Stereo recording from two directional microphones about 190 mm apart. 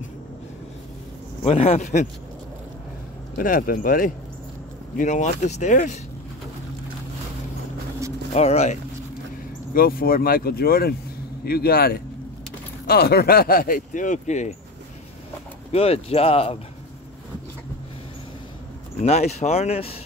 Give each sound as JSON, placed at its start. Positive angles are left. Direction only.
{"t": 1.4, "sound": "speech", "side_deg": 30}
{"t": 3.3, "sound": "speech", "side_deg": 45}
{"t": 8.3, "sound": "speech", "side_deg": 35}
{"t": 9.8, "sound": "speech", "side_deg": 50}
{"t": 15.7, "sound": "speech", "side_deg": 30}
{"t": 19.0, "sound": "speech", "side_deg": 35}